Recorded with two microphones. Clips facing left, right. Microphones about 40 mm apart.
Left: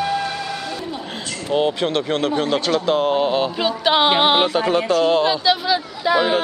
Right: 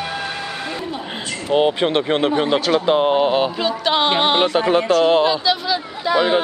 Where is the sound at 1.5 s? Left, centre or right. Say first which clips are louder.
Right 3 dB; right.